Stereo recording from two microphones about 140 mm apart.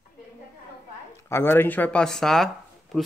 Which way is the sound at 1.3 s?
15° left (ahead or behind).